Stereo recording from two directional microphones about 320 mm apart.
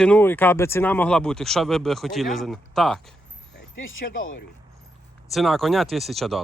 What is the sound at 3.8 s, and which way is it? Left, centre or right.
Speech, left.